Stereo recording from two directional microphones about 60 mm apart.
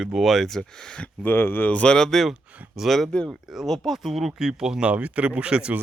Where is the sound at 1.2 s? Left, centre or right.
Left.